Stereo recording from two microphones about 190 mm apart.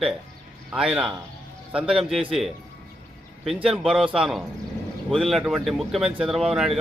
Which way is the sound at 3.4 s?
Centre (ahead or behind).